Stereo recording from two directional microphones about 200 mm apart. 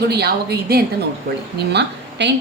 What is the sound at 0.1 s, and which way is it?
A woman's voice, 55° right (ahead or behind).